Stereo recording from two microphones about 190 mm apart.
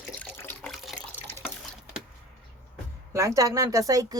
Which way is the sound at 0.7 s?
Centre (ahead or behind).